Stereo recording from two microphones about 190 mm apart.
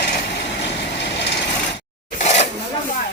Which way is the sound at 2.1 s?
35° left (ahead or behind).